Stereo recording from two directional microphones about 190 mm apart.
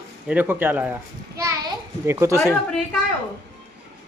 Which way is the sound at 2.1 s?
15° right (ahead or behind).